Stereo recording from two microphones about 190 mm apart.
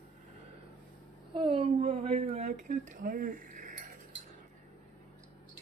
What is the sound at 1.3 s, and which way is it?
Speech, 25° right (ahead or behind).